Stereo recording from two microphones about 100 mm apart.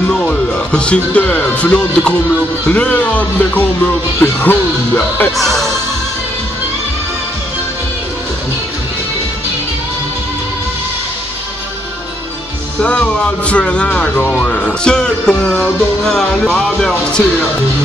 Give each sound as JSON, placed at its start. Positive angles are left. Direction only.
{"t": 0.1, "sound": "speech", "side_deg": 10}
{"t": 5.3, "sound": "music", "side_deg": 5}
{"t": 12.8, "sound": "speech", "side_deg": 10}